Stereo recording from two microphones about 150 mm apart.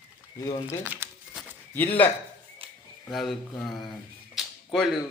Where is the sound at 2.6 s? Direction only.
40° right (ahead or behind).